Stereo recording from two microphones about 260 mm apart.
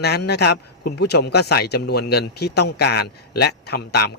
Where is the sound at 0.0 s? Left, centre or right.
Left.